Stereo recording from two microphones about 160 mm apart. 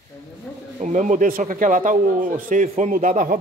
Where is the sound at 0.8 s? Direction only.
50° right (ahead or behind).